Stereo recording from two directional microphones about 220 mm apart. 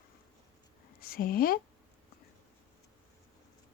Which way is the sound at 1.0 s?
40° left (ahead or behind).